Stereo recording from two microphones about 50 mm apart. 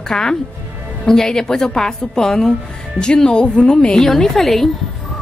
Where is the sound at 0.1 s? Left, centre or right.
Centre.